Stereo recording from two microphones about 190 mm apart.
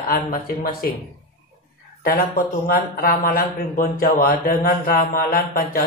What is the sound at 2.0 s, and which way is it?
A man's voice, 50° left (ahead or behind).